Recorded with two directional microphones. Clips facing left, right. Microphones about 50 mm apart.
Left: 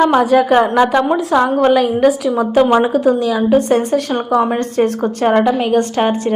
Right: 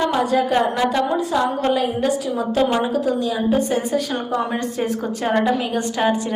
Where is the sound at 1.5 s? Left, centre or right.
Left.